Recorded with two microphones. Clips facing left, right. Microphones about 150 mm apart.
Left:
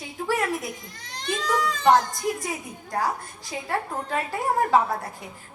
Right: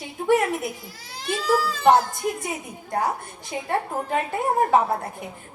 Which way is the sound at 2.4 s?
25° right (ahead or behind).